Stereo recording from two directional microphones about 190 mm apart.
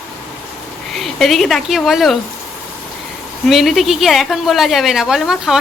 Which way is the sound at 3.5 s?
Centre (ahead or behind).